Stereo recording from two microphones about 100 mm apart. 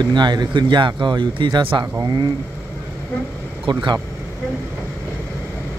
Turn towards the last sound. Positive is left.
turn(degrees=-50)  # may be behind; listen again after turning